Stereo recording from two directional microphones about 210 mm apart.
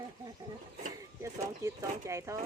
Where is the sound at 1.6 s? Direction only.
15° right (ahead or behind).